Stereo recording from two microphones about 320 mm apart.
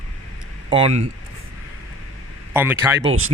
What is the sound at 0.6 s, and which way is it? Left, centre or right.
Speech, centre.